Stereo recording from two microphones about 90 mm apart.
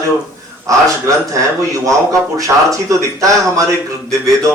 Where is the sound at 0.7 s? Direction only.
40° right (ahead or behind).